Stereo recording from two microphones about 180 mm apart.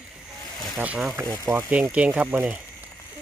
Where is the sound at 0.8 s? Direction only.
10° right (ahead or behind).